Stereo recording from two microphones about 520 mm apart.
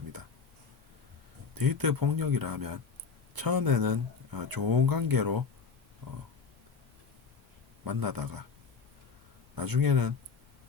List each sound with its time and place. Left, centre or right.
1.5 s speech: right
7.9 s speech: right
9.6 s speech: right